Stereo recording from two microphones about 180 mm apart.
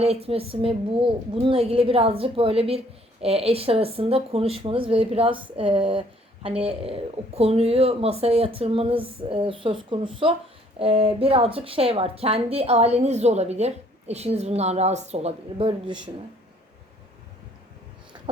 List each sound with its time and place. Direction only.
0.0 s a woman's voice: 35° right (ahead or behind)